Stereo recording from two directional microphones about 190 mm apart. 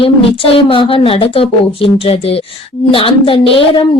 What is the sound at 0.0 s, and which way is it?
A woman's voice, 30° left (ahead or behind).